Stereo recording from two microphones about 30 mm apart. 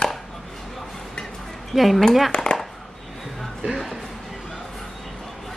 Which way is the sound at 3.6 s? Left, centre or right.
Right.